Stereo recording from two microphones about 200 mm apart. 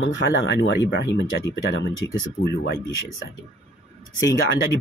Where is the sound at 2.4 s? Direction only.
55° left (ahead or behind).